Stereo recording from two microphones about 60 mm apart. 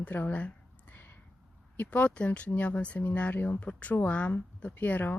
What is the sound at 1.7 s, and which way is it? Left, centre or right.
Speech, left.